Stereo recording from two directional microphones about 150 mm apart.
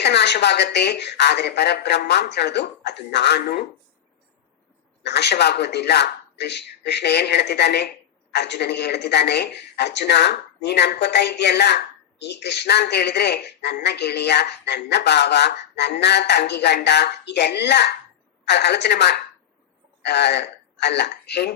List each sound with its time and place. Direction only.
0.0 s speech: 90° left
5.0 s speech: 90° left